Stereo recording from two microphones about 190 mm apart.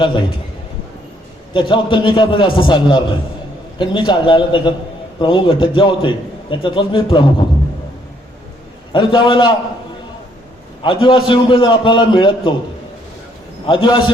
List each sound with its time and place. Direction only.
0.0 s a man's voice: 25° left (ahead or behind)
1.5 s a man's voice: 25° left (ahead or behind)
8.9 s a man's voice: 25° left (ahead or behind)
10.8 s a man's voice: 25° left (ahead or behind)
13.7 s a man's voice: 25° left (ahead or behind)